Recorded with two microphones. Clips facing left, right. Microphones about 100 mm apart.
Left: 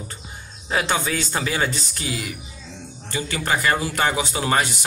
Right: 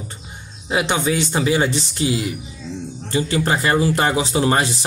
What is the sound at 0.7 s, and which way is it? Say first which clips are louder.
Speech: right 3 dB; 15° right (ahead or behind).